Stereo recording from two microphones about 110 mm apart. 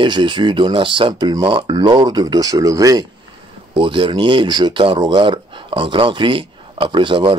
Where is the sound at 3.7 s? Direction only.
50° right (ahead or behind).